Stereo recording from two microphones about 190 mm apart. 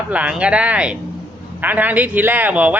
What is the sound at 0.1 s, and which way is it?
A man's voice, 5° right (ahead or behind).